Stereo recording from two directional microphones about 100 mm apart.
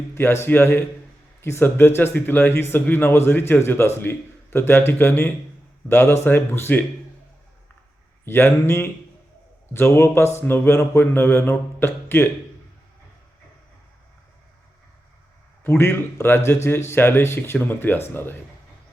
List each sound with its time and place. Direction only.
0.1 s a man's voice: 25° left (ahead or behind)
8.2 s speech: 20° left (ahead or behind)
15.6 s speech: 25° left (ahead or behind)